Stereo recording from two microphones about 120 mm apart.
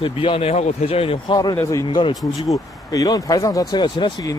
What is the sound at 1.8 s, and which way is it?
Speech, 40° left (ahead or behind).